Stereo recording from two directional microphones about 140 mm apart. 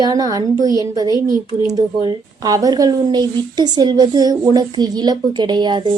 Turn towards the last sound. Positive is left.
turn(degrees=-35)  # may be behind; listen again after turning